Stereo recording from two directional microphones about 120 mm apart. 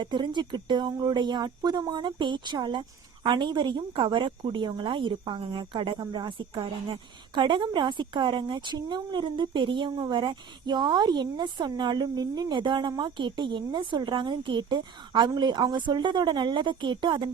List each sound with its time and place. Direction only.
0.0 s a woman's voice: 40° right (ahead or behind)